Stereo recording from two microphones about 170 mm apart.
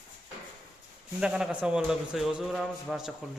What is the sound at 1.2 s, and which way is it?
Speech, 5° right (ahead or behind).